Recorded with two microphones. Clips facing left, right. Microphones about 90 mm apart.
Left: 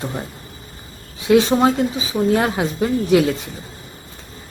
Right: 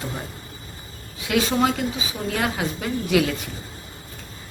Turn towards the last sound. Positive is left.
turn(degrees=30)  # may be behind; listen again after turning